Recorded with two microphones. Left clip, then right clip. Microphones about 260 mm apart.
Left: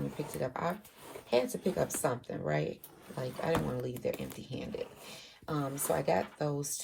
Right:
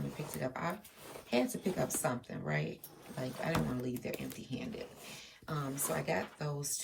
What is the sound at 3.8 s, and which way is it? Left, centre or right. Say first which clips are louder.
Speech: left 4 dB; centre.